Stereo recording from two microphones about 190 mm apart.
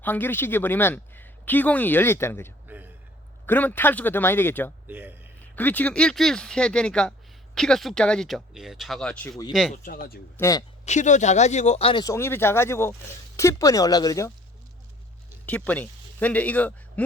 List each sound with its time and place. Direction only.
0.0 s speech: 10° left (ahead or behind)
2.7 s a sound: 10° right (ahead or behind)
3.4 s speech: 10° left (ahead or behind)
4.9 s a man's voice: 10° right (ahead or behind)
5.5 s speech: 10° left (ahead or behind)
9.8 s speech: 50° left (ahead or behind)
10.3 s speech: 15° left (ahead or behind)
10.8 s speech: 40° left (ahead or behind); by 14.3 s 15° left (ahead or behind)
15.4 s a man's voice: 10° left (ahead or behind)